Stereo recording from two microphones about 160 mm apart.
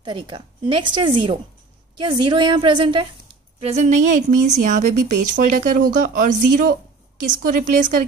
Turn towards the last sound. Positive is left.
turn(degrees=-50)  # may be behind; listen again after turning